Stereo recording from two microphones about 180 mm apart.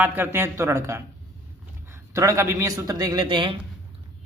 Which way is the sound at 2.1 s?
15° right (ahead or behind).